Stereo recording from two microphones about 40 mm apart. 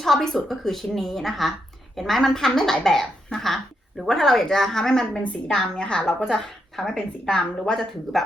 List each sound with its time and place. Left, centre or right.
0.0 s a woman's voice: centre; by 7.4 s left
7.6 s speech: centre